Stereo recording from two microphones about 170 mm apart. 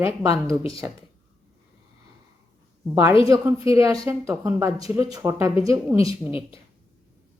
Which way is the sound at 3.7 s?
20° right (ahead or behind).